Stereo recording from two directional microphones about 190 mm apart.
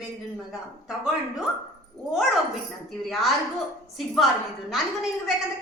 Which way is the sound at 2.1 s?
Centre (ahead or behind).